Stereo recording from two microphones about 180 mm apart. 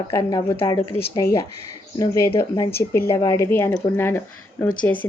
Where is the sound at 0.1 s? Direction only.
20° left (ahead or behind).